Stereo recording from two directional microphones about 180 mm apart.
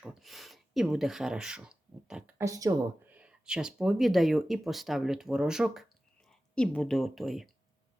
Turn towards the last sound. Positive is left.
turn(degrees=0)  # may be behind; listen again after turning